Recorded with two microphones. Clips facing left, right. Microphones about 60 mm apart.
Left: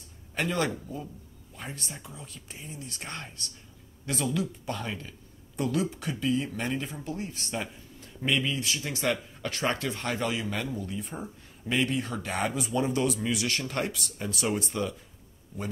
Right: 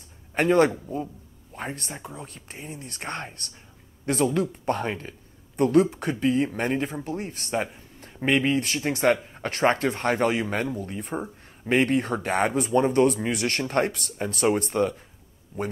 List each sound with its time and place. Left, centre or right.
0.3 s a man's voice: right